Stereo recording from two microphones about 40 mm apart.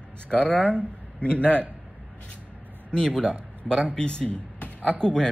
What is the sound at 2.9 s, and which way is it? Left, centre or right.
A man's voice, left.